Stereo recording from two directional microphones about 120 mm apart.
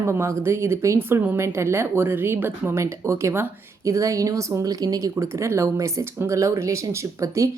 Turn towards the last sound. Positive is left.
turn(degrees=-25)  # may be behind; listen again after turning